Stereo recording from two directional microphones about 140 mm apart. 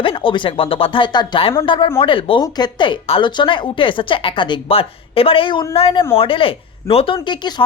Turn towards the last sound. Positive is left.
turn(degrees=35)  # may be behind; listen again after turning